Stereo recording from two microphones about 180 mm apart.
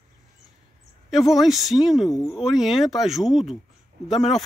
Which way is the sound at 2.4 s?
Centre (ahead or behind).